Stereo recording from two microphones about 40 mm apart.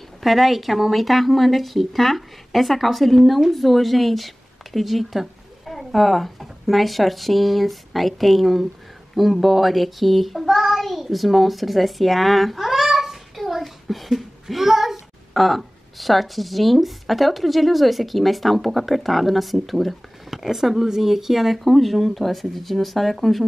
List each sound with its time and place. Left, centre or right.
0.2 s a child's voice: centre